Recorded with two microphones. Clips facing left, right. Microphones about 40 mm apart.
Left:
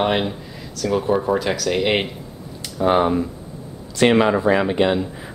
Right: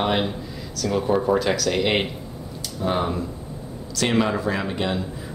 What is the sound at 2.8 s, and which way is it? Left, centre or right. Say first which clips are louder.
Speech: left 7 dB; left.